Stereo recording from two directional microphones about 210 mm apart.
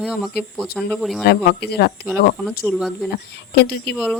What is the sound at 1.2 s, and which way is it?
Speech, 50° left (ahead or behind).